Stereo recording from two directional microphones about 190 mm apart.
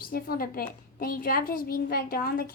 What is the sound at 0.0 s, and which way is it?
A child's voice, 50° left (ahead or behind).